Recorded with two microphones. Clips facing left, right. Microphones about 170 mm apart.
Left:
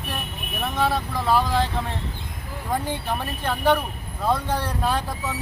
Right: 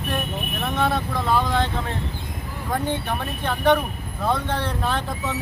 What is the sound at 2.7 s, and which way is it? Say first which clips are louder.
Speech: right 1 dB; 10° left (ahead or behind).